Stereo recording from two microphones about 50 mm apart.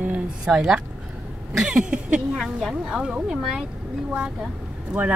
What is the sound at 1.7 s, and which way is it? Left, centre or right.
Speech, right.